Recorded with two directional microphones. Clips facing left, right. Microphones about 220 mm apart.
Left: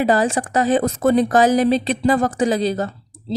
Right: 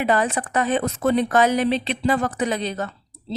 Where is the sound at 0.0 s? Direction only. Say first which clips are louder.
Left 4 dB; 30° left (ahead or behind).